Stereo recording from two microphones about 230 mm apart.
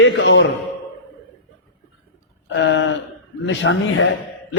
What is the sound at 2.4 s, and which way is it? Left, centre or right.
A man's voice, left.